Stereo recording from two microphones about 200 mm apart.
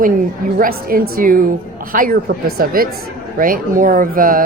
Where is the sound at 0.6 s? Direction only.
45° right (ahead or behind).